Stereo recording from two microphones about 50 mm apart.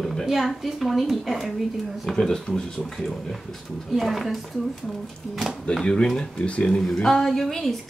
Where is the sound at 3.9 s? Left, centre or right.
Centre.